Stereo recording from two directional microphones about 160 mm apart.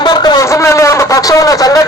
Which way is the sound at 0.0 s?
25° left (ahead or behind).